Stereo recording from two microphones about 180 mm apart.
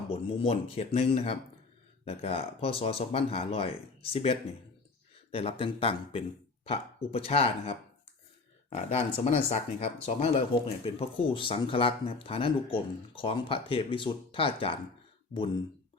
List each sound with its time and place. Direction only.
0.3 s speech: 35° left (ahead or behind)